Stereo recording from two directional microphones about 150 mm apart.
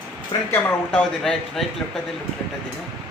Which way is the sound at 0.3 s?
35° left (ahead or behind).